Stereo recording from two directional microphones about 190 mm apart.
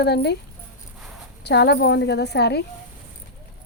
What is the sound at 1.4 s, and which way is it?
A woman's voice, 60° left (ahead or behind).